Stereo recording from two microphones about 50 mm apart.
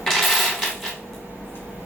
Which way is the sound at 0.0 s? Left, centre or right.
Centre.